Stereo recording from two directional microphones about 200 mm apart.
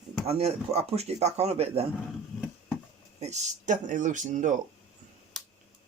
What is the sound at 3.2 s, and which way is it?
Speech, 35° right (ahead or behind).